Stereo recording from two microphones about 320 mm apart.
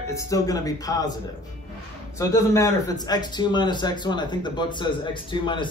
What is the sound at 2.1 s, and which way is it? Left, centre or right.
A man's voice, centre.